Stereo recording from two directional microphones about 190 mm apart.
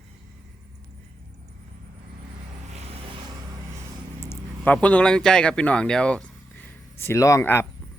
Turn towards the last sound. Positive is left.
turn(degrees=15)  # may be behind; listen again after turning